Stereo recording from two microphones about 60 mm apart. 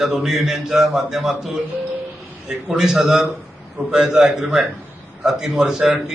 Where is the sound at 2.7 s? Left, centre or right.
Centre.